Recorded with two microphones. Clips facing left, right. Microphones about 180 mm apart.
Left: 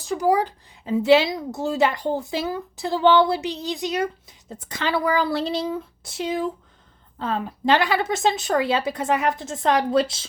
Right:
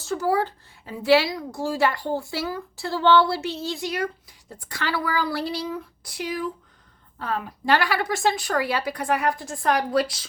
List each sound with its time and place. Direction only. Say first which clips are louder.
0.0 s a woman's voice: left 3 dB; 15° left (ahead or behind)